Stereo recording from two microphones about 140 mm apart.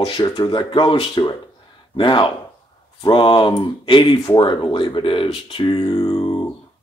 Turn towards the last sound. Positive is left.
turn(degrees=35)  # may be behind; listen again after turning